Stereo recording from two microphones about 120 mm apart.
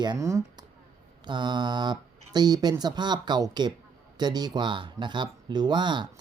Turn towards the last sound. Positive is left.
turn(degrees=-40)  # may be behind; listen again after turning